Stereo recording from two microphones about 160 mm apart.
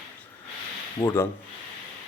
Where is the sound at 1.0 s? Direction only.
15° left (ahead or behind).